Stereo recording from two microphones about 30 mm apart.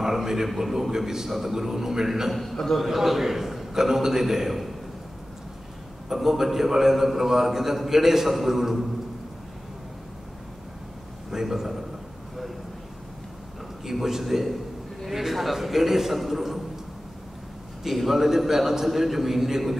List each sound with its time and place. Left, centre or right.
0.0 s a sound: centre
0.6 s a man's voice: centre
2.5 s a man's voice: centre
2.8 s a man's voice: centre
3.7 s a man's voice: centre
6.0 s a man's voice: centre
11.4 s a man's voice: centre
13.8 s a man's voice: centre
15.0 s a sound: centre
17.8 s a man's voice: centre